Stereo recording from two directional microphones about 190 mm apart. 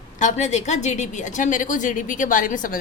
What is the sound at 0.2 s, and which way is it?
A woman's voice, 40° left (ahead or behind).